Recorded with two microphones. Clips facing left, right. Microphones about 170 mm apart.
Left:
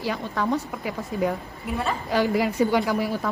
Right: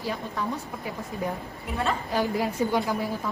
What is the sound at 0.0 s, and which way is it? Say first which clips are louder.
A woman's voice: left 4 dB; 90° left.